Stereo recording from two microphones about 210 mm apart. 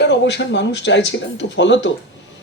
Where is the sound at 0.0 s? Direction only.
55° left (ahead or behind).